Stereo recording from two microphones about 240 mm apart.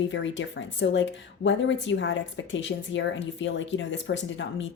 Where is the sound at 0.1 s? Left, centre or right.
Left.